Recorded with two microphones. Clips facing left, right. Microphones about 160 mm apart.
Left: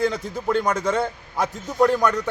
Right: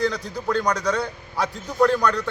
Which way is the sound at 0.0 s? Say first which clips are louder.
Left 1 dB; 20° left (ahead or behind).